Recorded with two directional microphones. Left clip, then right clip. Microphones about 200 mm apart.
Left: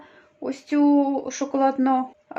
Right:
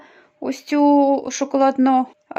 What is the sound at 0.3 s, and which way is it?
Speech, 45° right (ahead or behind).